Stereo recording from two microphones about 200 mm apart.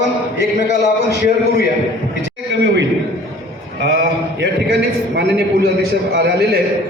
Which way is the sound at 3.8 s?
60° right (ahead or behind).